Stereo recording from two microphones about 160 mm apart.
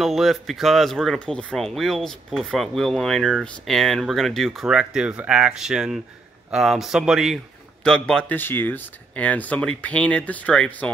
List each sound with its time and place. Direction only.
0.0 s speech: centre (ahead or behind)